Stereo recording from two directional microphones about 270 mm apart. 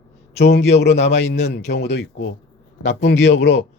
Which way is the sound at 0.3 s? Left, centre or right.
Left.